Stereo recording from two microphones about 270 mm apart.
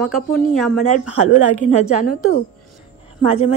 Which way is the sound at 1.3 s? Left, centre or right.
Right.